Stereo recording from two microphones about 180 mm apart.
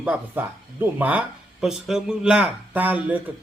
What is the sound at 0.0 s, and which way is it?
Speech, 10° right (ahead or behind).